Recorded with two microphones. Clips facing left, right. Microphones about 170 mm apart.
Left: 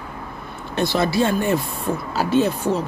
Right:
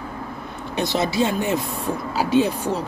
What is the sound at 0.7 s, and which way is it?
Speech, 20° right (ahead or behind).